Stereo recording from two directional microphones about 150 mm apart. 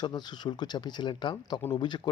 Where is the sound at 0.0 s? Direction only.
30° left (ahead or behind).